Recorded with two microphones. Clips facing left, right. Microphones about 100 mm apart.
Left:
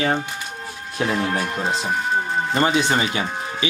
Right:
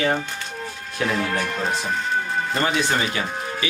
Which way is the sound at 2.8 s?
20° left (ahead or behind).